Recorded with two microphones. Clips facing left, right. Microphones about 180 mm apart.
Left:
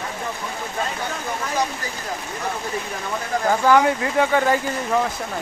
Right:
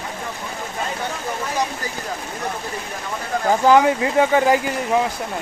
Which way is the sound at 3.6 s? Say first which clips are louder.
Right 3 dB; 20° right (ahead or behind).